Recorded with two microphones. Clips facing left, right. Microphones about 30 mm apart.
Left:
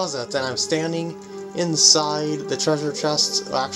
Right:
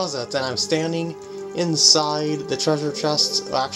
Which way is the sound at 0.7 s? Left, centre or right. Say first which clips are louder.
Right 2 dB; centre.